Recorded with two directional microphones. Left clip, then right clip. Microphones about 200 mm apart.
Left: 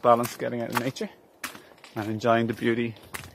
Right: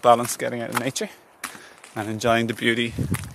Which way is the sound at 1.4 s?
50° right (ahead or behind).